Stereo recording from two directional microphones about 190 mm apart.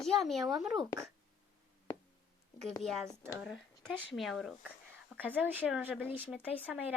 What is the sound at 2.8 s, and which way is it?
A woman's voice, centre (ahead or behind).